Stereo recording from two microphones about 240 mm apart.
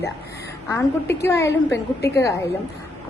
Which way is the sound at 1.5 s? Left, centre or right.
Left.